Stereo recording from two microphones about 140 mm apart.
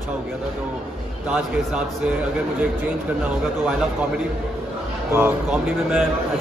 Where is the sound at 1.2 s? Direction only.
5° right (ahead or behind).